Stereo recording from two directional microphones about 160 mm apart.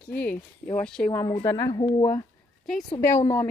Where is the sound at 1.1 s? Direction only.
20° left (ahead or behind).